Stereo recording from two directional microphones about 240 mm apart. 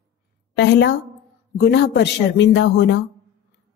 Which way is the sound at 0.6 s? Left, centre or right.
Left.